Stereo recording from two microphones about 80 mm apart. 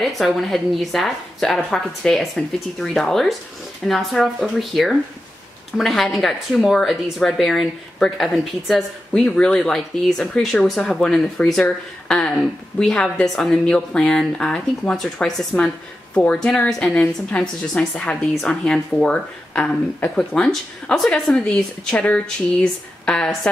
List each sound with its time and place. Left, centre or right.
0.0 s a woman's voice: centre